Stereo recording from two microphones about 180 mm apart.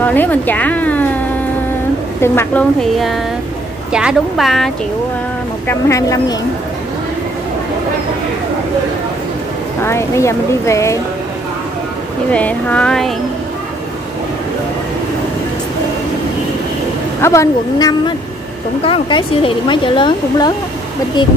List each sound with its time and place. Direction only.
0.0 s speech: 10° left (ahead or behind)
2.2 s speech: 15° left (ahead or behind)
2.8 s speech: centre (ahead or behind)
5.7 s speech: 15° left (ahead or behind)
9.8 s speech: 15° left (ahead or behind)
12.3 s speech: 10° left (ahead or behind)
17.2 s speech: 15° left (ahead or behind)